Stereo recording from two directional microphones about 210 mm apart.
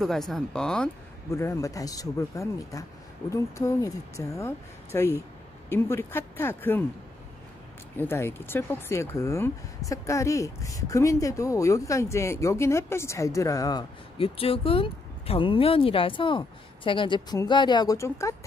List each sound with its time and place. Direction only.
0.0 s speech: centre (ahead or behind)
1.3 s speech: 15° left (ahead or behind)
8.0 s speech: 10° left (ahead or behind)